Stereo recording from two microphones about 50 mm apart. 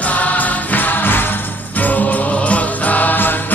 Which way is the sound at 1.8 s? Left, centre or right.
Left.